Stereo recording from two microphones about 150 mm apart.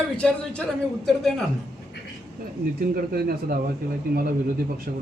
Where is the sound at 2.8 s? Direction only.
90° right.